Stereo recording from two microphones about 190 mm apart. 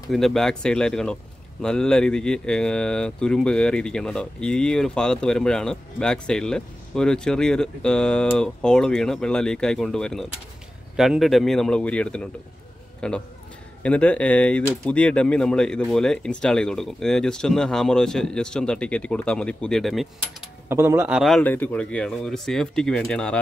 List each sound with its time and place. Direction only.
0.1 s speech: centre (ahead or behind)
20.6 s speech: 10° right (ahead or behind)
21.2 s speech: 5° left (ahead or behind)